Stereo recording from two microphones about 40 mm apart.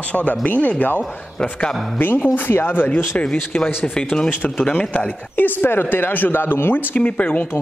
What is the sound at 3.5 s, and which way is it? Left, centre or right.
Speech, left.